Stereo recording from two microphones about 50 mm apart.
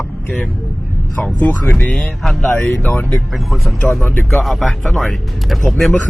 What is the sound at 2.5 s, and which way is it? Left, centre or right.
Speech, left.